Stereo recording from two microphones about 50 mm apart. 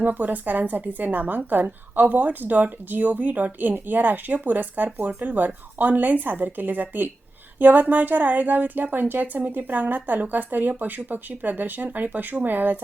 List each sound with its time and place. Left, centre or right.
0.0 s a woman's voice: right